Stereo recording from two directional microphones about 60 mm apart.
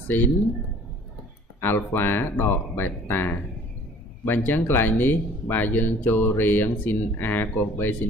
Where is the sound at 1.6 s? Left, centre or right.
Left.